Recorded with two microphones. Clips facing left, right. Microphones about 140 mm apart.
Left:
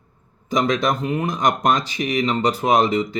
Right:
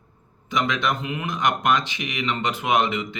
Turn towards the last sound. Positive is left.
turn(degrees=40)  # may be behind; listen again after turning